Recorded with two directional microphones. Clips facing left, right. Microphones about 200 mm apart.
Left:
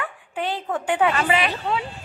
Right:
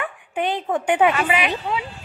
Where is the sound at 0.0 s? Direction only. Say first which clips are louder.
Right 3 dB; 20° right (ahead or behind).